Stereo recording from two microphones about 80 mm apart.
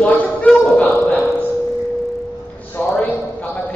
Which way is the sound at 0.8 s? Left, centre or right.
Centre.